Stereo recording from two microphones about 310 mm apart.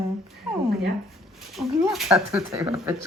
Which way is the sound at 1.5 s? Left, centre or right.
Centre.